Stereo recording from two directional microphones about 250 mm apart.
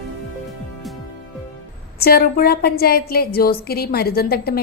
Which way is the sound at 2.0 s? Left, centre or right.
Left.